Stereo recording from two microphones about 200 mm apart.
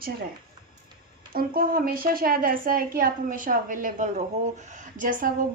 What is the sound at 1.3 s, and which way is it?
A woman's voice, 45° right (ahead or behind).